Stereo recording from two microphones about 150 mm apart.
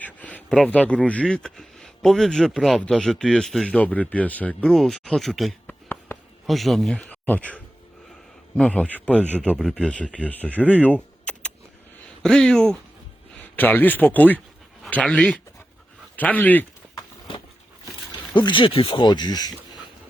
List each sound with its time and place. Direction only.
0.0 s speech: 10° left (ahead or behind)
18.3 s speech: 30° left (ahead or behind)